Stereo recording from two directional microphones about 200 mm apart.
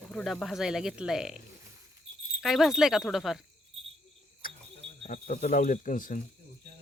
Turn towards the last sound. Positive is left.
turn(degrees=40)  # may be behind; listen again after turning